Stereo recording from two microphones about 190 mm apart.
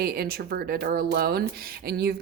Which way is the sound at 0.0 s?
55° right (ahead or behind).